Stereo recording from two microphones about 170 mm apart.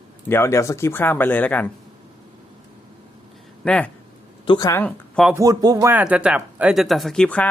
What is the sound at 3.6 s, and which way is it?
Speech, 5° left (ahead or behind).